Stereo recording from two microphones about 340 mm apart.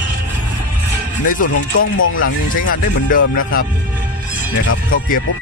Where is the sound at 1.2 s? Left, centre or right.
Left.